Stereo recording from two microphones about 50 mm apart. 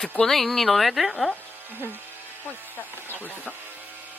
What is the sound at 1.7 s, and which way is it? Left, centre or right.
Speech, right.